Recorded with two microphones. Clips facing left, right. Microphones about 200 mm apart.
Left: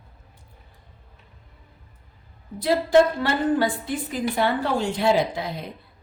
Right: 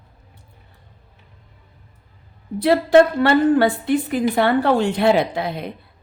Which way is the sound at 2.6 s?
65° right (ahead or behind).